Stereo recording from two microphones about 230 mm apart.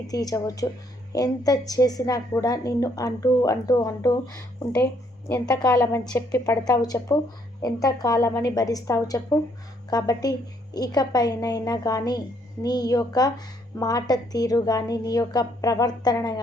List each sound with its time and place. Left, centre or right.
0.1 s a woman's voice: centre